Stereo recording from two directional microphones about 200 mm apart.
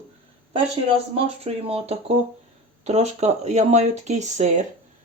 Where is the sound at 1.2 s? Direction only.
30° right (ahead or behind).